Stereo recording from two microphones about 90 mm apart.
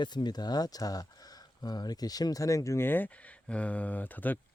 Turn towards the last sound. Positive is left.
turn(degrees=20)  # may be behind; listen again after turning